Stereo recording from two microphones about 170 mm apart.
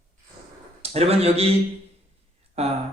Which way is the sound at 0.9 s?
35° right (ahead or behind).